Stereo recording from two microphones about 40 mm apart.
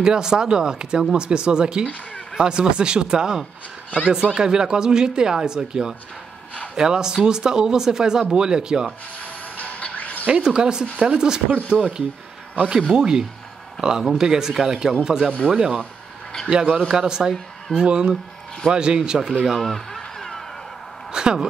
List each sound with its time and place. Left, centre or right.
0.0 s speech: centre
9.2 s a sound: left
10.3 s speech: centre
11.6 s speech: right
19.6 s speech: centre
20.2 s a sound: centre
21.1 s speech: centre